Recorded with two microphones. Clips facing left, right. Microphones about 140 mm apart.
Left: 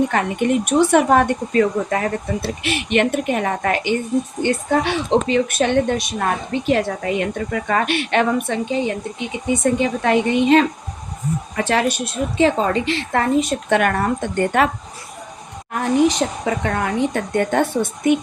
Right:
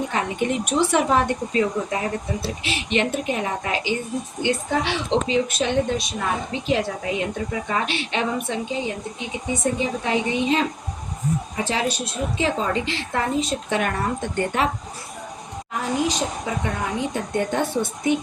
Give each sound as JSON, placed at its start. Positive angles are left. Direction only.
{"t": 0.1, "sound": "speech", "side_deg": 55}
{"t": 15.7, "sound": "speech", "side_deg": 60}